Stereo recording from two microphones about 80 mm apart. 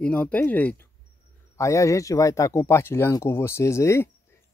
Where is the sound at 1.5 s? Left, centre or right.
Left.